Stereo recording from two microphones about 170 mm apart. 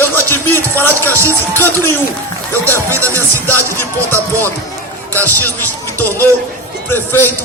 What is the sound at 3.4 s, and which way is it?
Music, 10° left (ahead or behind).